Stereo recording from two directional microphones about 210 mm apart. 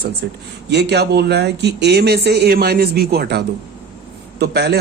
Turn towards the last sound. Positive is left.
turn(degrees=-50)  # may be behind; listen again after turning